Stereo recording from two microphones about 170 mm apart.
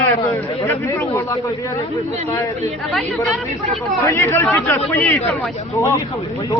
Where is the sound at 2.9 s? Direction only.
Centre (ahead or behind).